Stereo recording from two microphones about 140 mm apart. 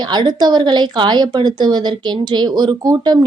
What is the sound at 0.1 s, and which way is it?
Speech, 30° right (ahead or behind).